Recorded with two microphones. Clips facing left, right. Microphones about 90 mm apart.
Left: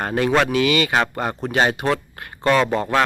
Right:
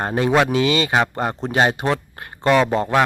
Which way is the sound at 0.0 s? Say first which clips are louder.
Right 1 dB; 25° right (ahead or behind).